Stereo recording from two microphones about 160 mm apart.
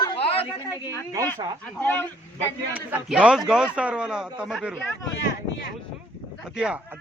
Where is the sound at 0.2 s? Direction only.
35° left (ahead or behind).